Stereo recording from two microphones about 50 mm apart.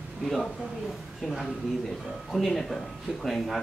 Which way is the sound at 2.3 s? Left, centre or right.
Centre.